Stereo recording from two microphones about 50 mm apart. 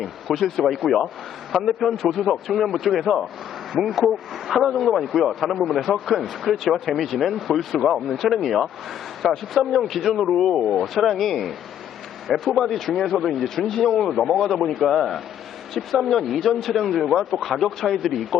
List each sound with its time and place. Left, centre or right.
0.0 s a man's voice: centre